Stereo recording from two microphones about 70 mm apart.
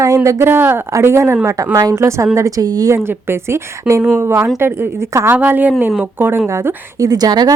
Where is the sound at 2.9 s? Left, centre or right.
Right.